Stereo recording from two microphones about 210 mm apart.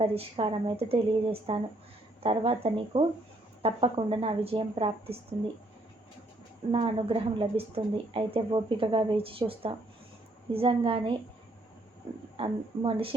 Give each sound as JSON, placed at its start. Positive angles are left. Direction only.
{"t": 0.0, "sound": "speech", "side_deg": -25}
{"t": 6.7, "sound": "speech", "side_deg": -25}
{"t": 12.4, "sound": "speech", "side_deg": -25}